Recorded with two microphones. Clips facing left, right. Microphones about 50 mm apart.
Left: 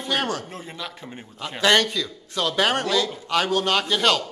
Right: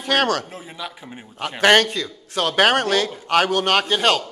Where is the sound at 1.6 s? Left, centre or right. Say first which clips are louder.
Right 4 dB; right.